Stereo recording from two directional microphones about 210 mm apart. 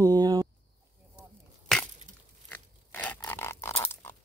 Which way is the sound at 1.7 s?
Centre (ahead or behind).